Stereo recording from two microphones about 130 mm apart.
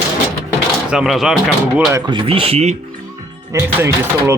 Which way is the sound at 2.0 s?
40° right (ahead or behind).